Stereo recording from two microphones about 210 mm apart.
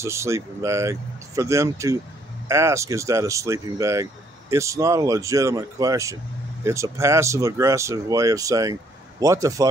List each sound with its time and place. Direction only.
0.0 s speech: 15° right (ahead or behind)